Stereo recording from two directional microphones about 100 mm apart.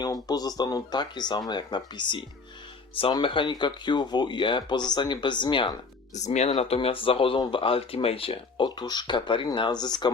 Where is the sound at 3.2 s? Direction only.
55° left (ahead or behind).